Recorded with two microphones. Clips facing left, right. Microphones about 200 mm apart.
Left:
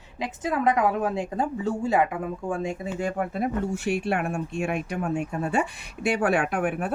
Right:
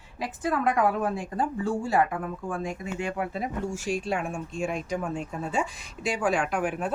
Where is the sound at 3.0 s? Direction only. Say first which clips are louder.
Left 4 dB; 50° left (ahead or behind).